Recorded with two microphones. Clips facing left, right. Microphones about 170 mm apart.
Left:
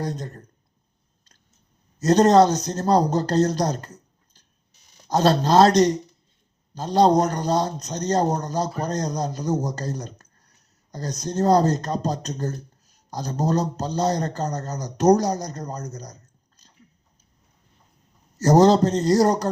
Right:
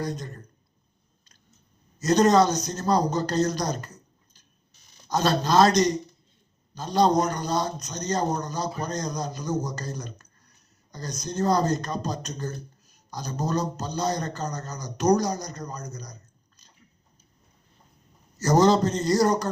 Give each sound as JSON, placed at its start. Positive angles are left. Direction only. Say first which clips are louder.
{"t": 0.0, "sound": "a man's voice", "louder": "left 2 dB", "side_deg": 30}
{"t": 2.1, "sound": "a man's voice", "louder": "left 4 dB", "side_deg": 30}
{"t": 5.0, "sound": "a man's voice", "louder": "left 5 dB", "side_deg": 30}
{"t": 6.7, "sound": "a man's voice", "louder": "left 4 dB", "side_deg": 35}
{"t": 11.2, "sound": "a man's voice", "louder": "left 5 dB", "side_deg": 35}
{"t": 18.4, "sound": "a man's voice", "louder": "left 4 dB", "side_deg": 35}